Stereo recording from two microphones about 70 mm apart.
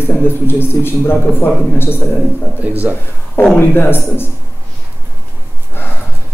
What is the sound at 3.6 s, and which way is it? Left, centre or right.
Speech, left.